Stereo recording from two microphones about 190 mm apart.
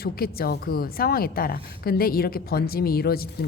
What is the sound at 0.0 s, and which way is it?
A woman's voice, 55° left (ahead or behind).